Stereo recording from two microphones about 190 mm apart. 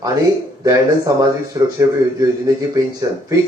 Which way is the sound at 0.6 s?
20° right (ahead or behind).